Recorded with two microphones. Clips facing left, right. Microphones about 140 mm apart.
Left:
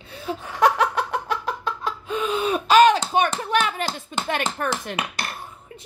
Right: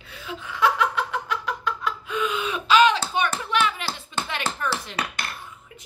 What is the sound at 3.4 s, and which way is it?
Speech, 40° left (ahead or behind).